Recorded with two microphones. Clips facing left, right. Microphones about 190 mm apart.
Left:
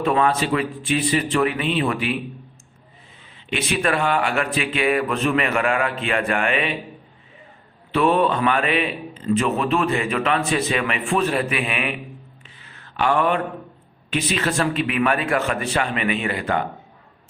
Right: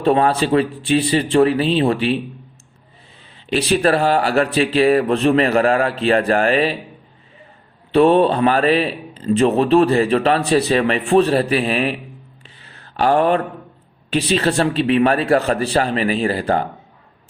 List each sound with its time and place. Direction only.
0.0 s a man's voice: 35° right (ahead or behind)
3.3 s a man's voice: 35° right (ahead or behind)
7.9 s a man's voice: 30° right (ahead or behind)
12.5 s mantra: 35° right (ahead or behind)
14.1 s a man's voice: 35° right (ahead or behind)